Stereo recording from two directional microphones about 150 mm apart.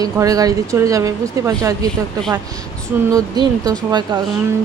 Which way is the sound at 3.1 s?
25° right (ahead or behind).